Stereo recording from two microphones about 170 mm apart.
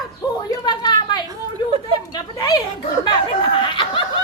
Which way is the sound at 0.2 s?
20° left (ahead or behind).